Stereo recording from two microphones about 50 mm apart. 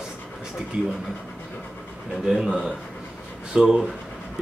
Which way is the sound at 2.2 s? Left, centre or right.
Centre.